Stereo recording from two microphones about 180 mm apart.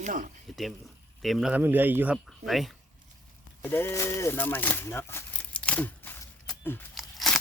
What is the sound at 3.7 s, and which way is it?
Speech, 15° left (ahead or behind).